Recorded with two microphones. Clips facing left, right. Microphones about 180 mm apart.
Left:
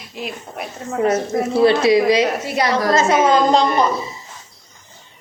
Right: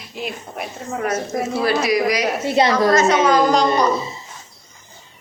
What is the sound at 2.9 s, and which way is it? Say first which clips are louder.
Speech: even; 25° left (ahead or behind).